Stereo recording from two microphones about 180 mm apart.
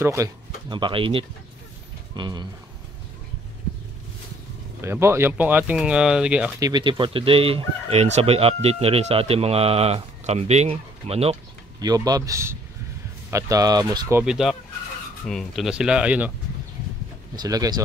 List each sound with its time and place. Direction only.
0.0 s speech: 15° right (ahead or behind)
4.8 s speech: 15° right (ahead or behind)
6.6 s speech: 25° right (ahead or behind)
11.8 s speech: 20° right (ahead or behind)
14.2 s speech: centre (ahead or behind)
17.4 s speech: 20° right (ahead or behind)